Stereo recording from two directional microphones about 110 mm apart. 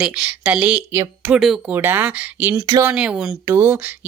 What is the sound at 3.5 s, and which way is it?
Speech, 20° right (ahead or behind).